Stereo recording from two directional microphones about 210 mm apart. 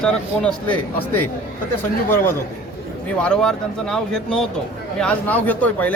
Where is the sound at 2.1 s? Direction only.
10° left (ahead or behind).